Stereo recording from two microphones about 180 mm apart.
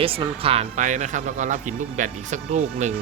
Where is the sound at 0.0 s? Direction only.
30° right (ahead or behind).